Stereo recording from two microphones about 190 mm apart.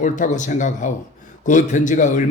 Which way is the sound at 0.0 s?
40° left (ahead or behind).